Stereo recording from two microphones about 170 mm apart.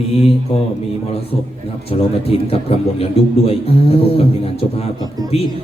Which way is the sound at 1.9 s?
35° left (ahead or behind).